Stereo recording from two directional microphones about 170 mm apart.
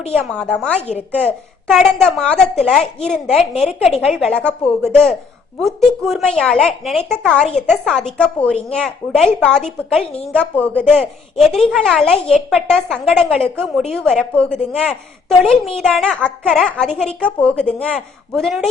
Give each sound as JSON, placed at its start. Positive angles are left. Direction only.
{"t": 0.1, "sound": "a woman's voice", "side_deg": 5}
{"t": 0.8, "sound": "speech", "side_deg": 40}
{"t": 1.6, "sound": "a woman's voice", "side_deg": 5}